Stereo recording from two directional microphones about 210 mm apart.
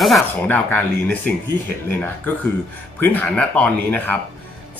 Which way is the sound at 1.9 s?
10° left (ahead or behind).